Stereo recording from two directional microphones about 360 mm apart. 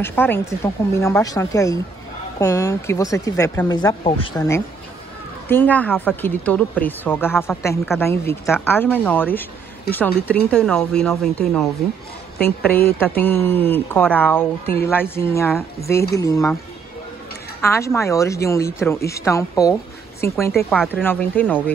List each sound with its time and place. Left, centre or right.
0.0 s a woman's voice: centre
12.8 s a woman's voice: centre
17.6 s speech: centre